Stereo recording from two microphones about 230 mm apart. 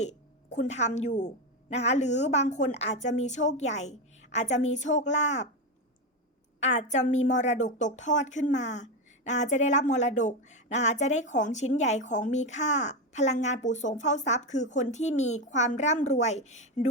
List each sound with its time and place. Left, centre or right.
0.5 s a woman's voice: left
6.6 s a woman's voice: left